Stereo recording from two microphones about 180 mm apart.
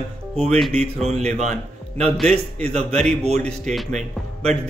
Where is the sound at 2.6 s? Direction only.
35° right (ahead or behind).